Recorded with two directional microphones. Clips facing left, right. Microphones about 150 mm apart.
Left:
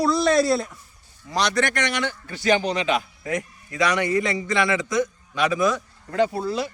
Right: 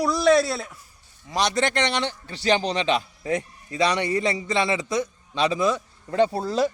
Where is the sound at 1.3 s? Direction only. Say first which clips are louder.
Even; 25° right (ahead or behind).